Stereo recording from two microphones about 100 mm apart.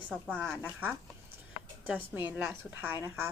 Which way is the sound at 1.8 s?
20° right (ahead or behind).